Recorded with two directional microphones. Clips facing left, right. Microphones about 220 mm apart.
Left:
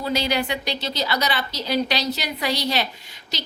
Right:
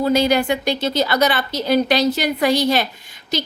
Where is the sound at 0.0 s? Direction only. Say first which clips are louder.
Right 7 dB; 50° right (ahead or behind).